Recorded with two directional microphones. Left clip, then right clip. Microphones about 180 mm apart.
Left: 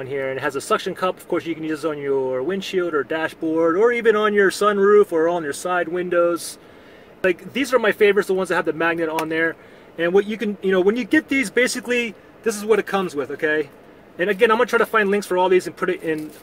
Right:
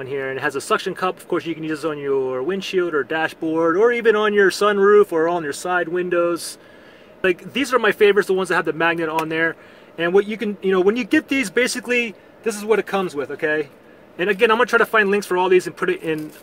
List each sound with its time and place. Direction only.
0.0 s speech: 30° right (ahead or behind)